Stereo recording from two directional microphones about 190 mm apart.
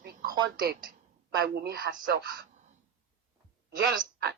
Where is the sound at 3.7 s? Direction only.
55° right (ahead or behind).